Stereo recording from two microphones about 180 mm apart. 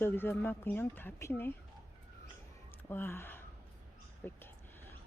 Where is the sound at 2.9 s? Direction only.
10° left (ahead or behind).